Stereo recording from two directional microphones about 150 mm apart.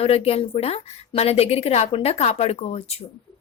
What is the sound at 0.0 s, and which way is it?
A woman's voice, 40° left (ahead or behind).